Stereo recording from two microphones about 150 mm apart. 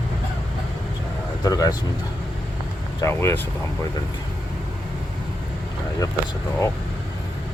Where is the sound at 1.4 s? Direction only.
25° left (ahead or behind).